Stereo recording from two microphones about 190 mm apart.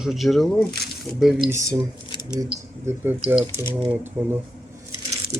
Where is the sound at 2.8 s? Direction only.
10° right (ahead or behind).